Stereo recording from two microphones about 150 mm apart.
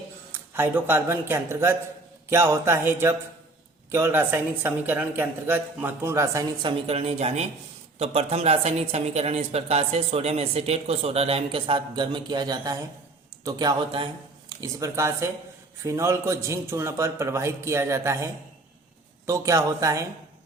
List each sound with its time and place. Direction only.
0.5 s a woman's voice: 15° right (ahead or behind)
6.6 s a woman's voice: 35° right (ahead or behind)
14.6 s a man's voice: 20° right (ahead or behind)